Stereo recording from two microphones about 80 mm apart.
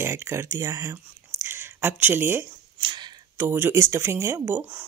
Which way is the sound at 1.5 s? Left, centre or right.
Right.